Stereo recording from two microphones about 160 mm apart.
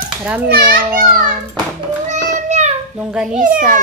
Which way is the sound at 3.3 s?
55° right (ahead or behind).